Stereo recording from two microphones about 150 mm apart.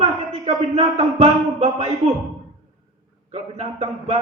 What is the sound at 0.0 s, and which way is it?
Speech, 45° right (ahead or behind).